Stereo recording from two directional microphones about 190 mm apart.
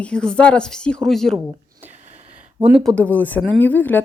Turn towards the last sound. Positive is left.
turn(degrees=10)  # may be behind; listen again after turning